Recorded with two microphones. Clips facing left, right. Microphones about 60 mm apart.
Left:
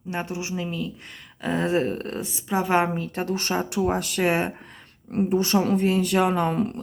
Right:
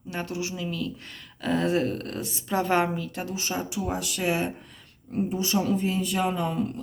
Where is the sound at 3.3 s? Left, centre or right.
Left.